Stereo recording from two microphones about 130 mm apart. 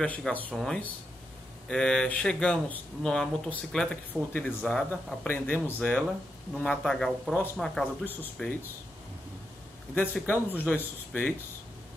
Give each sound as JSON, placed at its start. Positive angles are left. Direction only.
{"t": 0.0, "sound": "speech", "side_deg": 10}
{"t": 8.0, "sound": "speech", "side_deg": 15}
{"t": 10.2, "sound": "speech", "side_deg": 15}